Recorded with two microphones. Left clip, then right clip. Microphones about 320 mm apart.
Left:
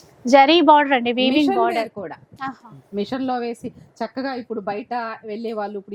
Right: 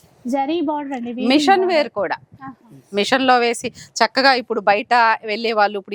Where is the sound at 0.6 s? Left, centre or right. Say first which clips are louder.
Left 10 dB; centre.